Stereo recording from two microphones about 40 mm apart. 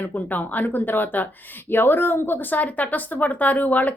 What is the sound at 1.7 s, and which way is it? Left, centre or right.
Speech, left.